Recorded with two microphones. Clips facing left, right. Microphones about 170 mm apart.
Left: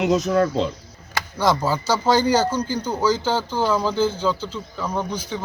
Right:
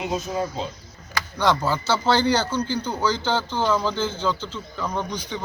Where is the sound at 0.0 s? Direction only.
75° left (ahead or behind).